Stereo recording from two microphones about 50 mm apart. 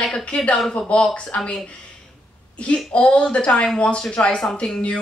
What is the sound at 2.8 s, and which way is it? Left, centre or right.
Speech, centre.